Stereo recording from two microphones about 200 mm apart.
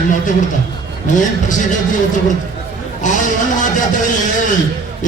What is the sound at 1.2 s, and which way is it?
Music, 40° left (ahead or behind).